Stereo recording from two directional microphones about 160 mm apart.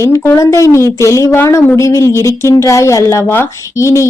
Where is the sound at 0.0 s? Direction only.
20° left (ahead or behind).